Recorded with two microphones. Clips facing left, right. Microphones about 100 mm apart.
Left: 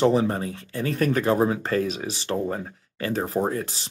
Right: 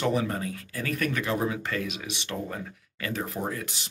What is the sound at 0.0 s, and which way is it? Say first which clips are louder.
Speech: left 6 dB; 30° left (ahead or behind).